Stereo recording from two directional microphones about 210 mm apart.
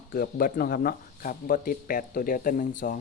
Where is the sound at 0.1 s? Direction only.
45° left (ahead or behind).